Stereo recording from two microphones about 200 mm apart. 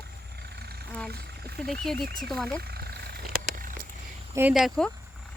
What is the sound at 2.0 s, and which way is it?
Speech, 50° right (ahead or behind).